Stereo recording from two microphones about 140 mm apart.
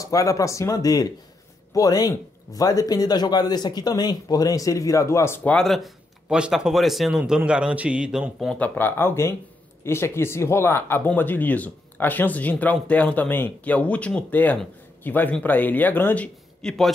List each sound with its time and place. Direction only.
0.0 s speech: 25° left (ahead or behind); by 8.5 s 5° right (ahead or behind)
8.5 s speech: 10° left (ahead or behind)